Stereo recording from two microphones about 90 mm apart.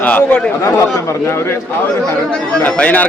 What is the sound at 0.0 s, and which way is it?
Speech, 15° left (ahead or behind).